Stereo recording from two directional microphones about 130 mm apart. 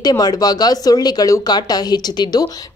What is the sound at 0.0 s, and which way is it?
A woman's voice, 30° left (ahead or behind).